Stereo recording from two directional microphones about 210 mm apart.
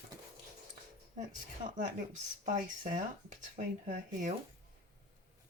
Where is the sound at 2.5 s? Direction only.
40° right (ahead or behind).